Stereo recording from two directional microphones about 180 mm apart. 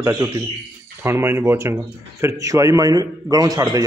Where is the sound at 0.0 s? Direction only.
15° right (ahead or behind).